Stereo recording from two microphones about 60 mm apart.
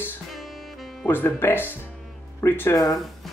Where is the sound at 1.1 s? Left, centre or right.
Left.